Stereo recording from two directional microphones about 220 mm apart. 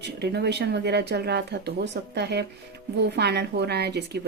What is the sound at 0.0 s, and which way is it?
A woman's voice, 50° right (ahead or behind).